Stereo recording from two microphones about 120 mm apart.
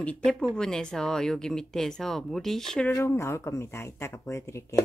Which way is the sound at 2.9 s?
20° left (ahead or behind).